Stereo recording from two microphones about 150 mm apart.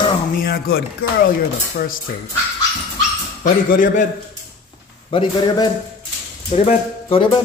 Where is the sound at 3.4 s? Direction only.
65° left (ahead or behind).